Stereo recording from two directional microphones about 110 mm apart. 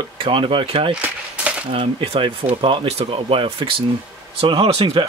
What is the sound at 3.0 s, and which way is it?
Speech, 65° right (ahead or behind).